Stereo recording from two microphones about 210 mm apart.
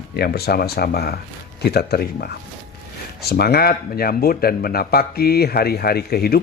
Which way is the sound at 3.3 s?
45° left (ahead or behind).